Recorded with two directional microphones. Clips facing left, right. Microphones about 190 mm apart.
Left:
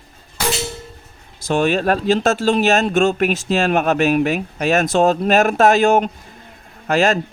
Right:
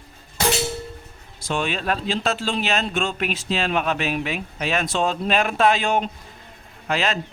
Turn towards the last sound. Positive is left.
turn(degrees=45)  # may be behind; listen again after turning